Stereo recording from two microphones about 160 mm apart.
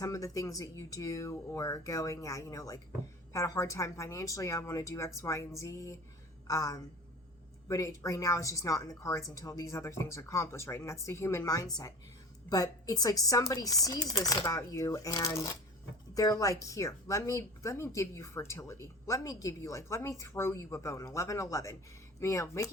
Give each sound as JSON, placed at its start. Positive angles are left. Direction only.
{"t": 0.0, "sound": "speech", "side_deg": 20}